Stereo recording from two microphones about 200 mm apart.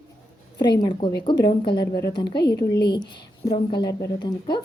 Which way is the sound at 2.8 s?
55° left (ahead or behind).